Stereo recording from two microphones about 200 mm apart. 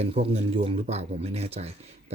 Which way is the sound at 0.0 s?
30° right (ahead or behind).